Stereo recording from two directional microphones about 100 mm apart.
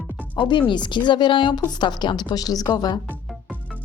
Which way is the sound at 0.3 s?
55° left (ahead or behind).